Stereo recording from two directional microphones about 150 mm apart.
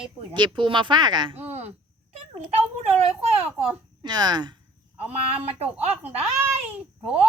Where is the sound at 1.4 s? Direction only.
15° right (ahead or behind).